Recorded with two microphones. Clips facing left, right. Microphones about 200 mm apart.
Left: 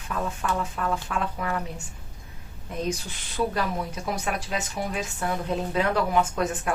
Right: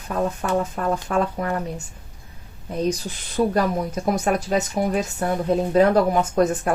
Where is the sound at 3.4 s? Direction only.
35° right (ahead or behind).